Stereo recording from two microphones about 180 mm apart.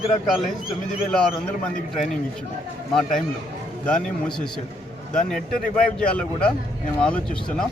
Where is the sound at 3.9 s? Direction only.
5° left (ahead or behind).